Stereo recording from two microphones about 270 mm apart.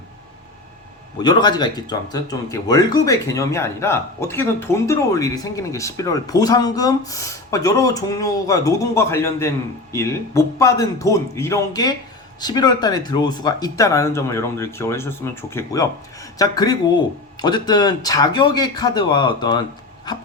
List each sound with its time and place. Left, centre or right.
1.2 s speech: centre